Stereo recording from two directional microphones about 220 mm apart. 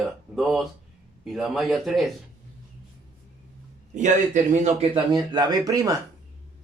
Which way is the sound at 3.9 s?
35° right (ahead or behind).